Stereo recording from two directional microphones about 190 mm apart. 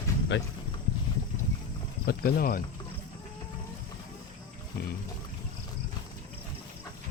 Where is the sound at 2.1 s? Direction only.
50° left (ahead or behind).